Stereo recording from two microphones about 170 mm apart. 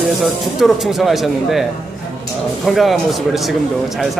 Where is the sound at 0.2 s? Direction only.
Centre (ahead or behind).